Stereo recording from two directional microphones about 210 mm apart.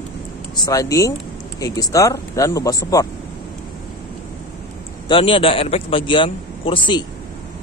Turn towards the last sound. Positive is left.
turn(degrees=25)  # may be behind; listen again after turning